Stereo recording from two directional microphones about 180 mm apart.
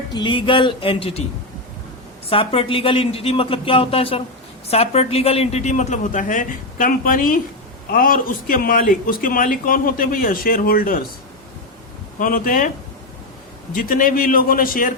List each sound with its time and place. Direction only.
0.1 s speech: 25° left (ahead or behind)
2.3 s a man's voice: 30° left (ahead or behind); by 11.0 s 55° left (ahead or behind)
12.2 s a man's voice: 50° left (ahead or behind)
13.7 s a man's voice: 50° left (ahead or behind)